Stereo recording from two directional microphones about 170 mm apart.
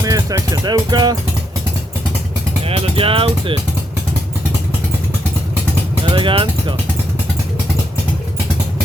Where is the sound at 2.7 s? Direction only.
35° right (ahead or behind).